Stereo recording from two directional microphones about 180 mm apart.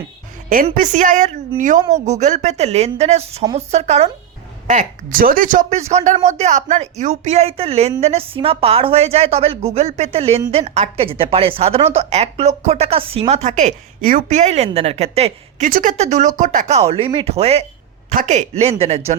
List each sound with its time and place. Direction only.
0.5 s a woman's voice: 50° right (ahead or behind)